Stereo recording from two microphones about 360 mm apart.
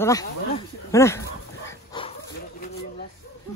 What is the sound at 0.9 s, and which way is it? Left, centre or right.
Dog, centre.